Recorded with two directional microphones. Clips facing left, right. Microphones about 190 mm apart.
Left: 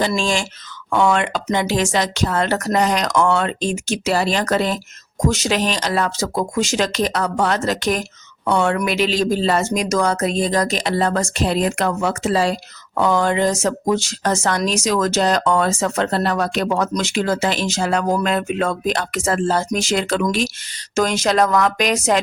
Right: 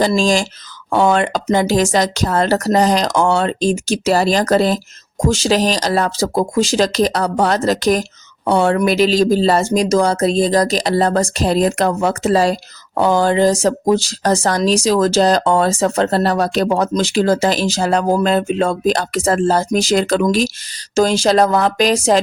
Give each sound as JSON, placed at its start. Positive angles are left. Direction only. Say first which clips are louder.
{"t": 0.1, "sound": "speech", "louder": "right 6 dB", "side_deg": -35}